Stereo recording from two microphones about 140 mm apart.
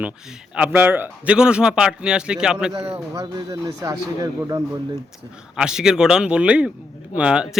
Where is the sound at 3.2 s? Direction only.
30° right (ahead or behind).